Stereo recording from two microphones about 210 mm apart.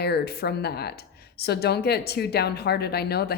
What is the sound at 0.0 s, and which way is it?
A woman's voice, 50° left (ahead or behind).